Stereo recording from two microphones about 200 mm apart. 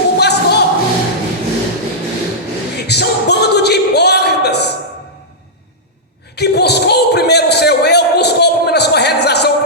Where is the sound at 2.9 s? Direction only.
55° left (ahead or behind).